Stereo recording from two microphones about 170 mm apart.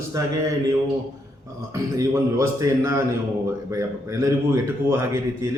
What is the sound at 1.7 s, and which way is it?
A man's voice, 15° right (ahead or behind).